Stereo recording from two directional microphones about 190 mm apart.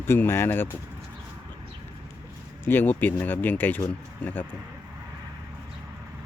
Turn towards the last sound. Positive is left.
turn(degrees=10)  # may be behind; listen again after turning